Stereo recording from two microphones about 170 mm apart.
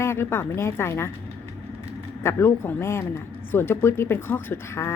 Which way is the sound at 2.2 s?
15° left (ahead or behind).